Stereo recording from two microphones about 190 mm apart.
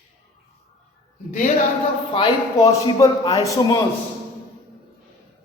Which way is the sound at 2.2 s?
20° left (ahead or behind).